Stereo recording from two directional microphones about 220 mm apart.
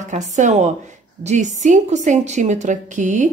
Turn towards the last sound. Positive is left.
turn(degrees=-35)  # may be behind; listen again after turning